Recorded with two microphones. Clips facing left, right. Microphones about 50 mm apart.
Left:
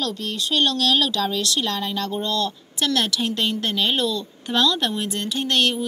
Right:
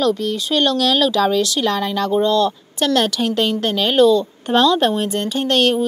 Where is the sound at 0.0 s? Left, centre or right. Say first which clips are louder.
Right 8 dB; right.